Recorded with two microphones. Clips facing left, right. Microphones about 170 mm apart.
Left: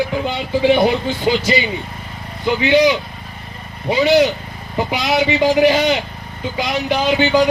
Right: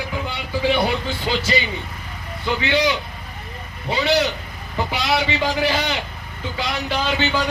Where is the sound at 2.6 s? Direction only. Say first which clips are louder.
Left 7 dB; 15° left (ahead or behind).